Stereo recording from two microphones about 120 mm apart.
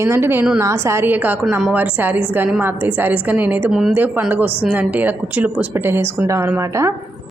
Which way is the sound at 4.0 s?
15° right (ahead or behind).